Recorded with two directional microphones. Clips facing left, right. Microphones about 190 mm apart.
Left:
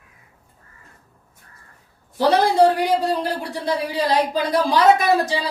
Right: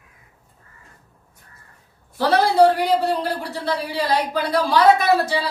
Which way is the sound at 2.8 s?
15° left (ahead or behind).